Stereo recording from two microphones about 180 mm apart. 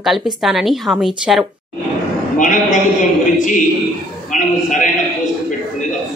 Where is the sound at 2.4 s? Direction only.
45° left (ahead or behind).